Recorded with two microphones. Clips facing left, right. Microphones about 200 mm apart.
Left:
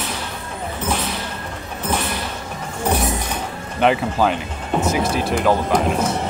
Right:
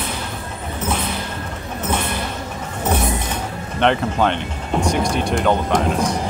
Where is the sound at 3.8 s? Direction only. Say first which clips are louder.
Even; 5° left (ahead or behind).